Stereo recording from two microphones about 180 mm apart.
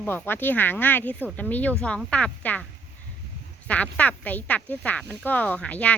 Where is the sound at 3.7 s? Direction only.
5° left (ahead or behind).